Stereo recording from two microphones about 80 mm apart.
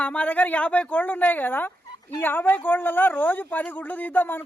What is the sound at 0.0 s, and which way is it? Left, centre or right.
A man's voice, centre.